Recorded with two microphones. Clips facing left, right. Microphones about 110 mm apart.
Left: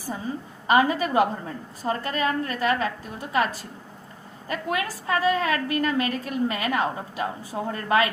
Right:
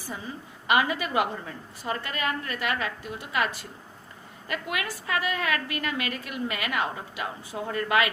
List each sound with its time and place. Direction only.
0.7 s a woman's voice: 35° left (ahead or behind)